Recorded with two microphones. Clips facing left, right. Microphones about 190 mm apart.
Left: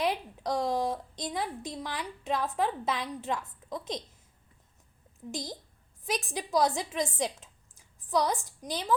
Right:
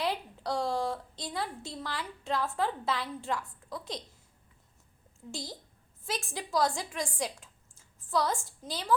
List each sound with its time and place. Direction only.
0.0 s a woman's voice: 20° left (ahead or behind)
5.3 s a woman's voice: 20° left (ahead or behind)